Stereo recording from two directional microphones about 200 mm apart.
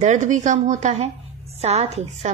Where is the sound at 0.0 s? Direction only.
35° right (ahead or behind).